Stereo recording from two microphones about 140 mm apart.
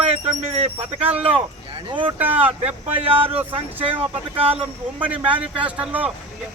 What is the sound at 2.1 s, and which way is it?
Speech, 10° right (ahead or behind).